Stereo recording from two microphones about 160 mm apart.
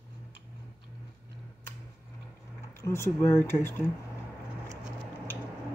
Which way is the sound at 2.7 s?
15° left (ahead or behind).